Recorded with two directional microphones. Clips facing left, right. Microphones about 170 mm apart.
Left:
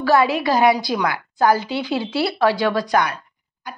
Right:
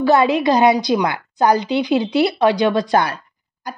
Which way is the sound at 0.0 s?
20° right (ahead or behind).